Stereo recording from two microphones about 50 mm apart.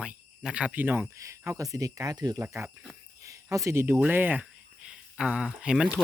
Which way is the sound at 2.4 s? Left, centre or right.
Right.